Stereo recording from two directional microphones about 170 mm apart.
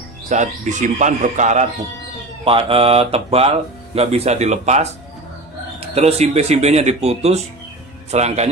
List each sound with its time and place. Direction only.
0.3 s a man's voice: 45° right (ahead or behind)
2.4 s speech: 35° right (ahead or behind)